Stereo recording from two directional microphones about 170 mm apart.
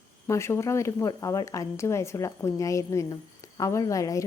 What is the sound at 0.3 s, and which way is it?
Speech, 15° left (ahead or behind).